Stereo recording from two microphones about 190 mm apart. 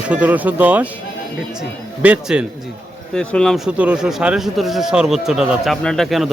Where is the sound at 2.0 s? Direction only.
5° right (ahead or behind).